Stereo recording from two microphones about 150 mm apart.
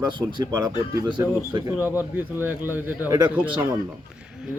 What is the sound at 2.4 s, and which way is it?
Speech, 15° right (ahead or behind).